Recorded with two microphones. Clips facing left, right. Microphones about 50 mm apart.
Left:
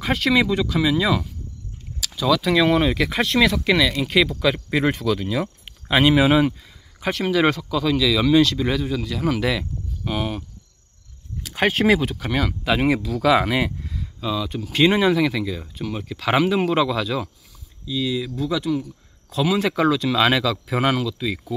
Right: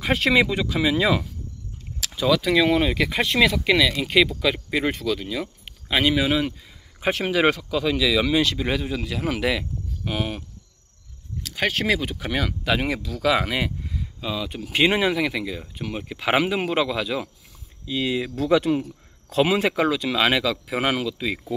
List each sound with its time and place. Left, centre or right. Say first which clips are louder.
0.2 s speech: left 2 dB; centre
2.4 s speech: left 2 dB; centre
7.0 s speech: even; right
7.3 s speech: left 2 dB; centre
11.4 s speech: left 5 dB; centre
12.1 s speech: left 2 dB; centre
13.8 s speech: left 3 dB; centre
17.8 s speech: even; right
18.3 s speech: right 3 dB; right
19.3 s speech: right 1 dB; right
19.7 s speech: left 3 dB; centre